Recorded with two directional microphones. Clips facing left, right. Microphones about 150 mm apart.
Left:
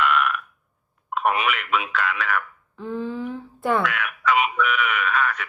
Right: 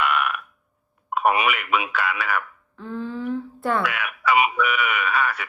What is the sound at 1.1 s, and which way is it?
Speech, 10° right (ahead or behind).